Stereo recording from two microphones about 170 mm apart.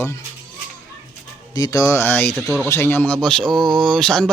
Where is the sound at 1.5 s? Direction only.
20° left (ahead or behind).